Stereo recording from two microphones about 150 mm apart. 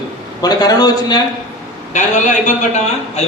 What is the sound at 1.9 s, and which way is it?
A man's voice, 55° left (ahead or behind).